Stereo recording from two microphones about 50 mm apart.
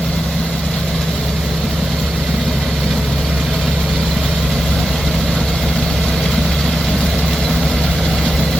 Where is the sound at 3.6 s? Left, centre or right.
Centre.